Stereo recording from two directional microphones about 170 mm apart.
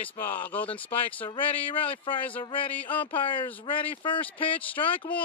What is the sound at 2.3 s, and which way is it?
Speech, 30° left (ahead or behind).